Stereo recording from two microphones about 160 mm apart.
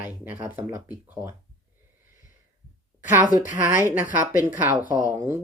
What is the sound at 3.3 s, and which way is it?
Speech, 55° left (ahead or behind).